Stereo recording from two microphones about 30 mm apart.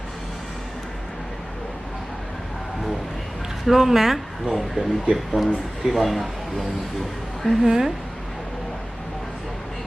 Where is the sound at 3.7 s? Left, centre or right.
Centre.